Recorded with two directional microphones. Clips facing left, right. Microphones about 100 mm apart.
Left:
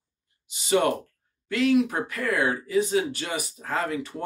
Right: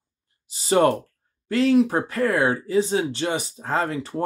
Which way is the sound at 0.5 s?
35° right (ahead or behind).